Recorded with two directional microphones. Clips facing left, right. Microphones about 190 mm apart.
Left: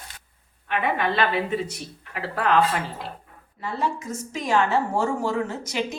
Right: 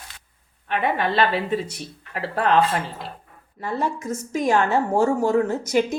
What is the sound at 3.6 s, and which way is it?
A woman's voice, 50° right (ahead or behind).